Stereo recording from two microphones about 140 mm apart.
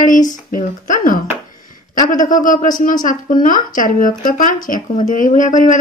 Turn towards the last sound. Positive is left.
turn(degrees=65)  # may be behind; listen again after turning